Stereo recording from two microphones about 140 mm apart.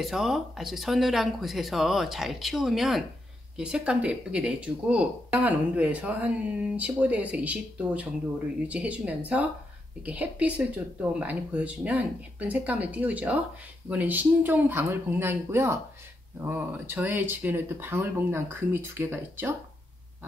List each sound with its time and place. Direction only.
0.0 s speech: centre (ahead or behind)